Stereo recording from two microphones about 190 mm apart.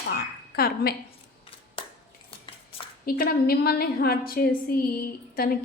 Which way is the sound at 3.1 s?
50° left (ahead or behind).